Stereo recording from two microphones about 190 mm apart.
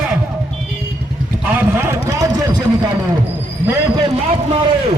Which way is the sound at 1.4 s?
10° right (ahead or behind).